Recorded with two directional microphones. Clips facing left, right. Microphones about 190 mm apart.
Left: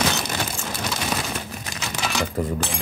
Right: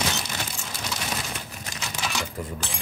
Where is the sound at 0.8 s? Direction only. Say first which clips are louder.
Left 5 dB; 85° left; by 2.7 s 70° left (ahead or behind).